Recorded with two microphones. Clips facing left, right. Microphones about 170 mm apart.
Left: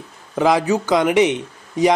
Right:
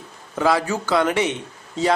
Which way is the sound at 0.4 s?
15° left (ahead or behind).